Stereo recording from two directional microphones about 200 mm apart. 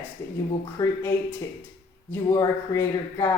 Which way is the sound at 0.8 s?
15° left (ahead or behind).